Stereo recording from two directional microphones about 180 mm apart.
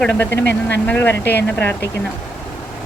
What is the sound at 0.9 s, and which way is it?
Speech, 10° left (ahead or behind).